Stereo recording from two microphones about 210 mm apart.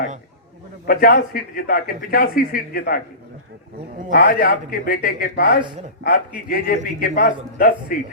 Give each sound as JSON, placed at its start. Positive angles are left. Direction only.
{"t": 0.9, "sound": "a man's voice", "side_deg": 45}
{"t": 4.1, "sound": "a man's voice", "side_deg": 45}